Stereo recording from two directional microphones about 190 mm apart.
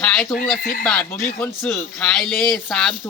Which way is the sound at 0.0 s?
5° left (ahead or behind).